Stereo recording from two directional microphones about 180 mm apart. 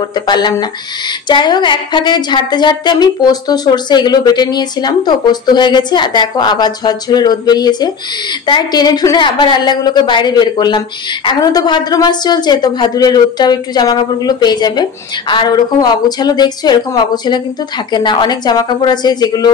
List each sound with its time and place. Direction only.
0.1 s a woman's voice: 25° left (ahead or behind)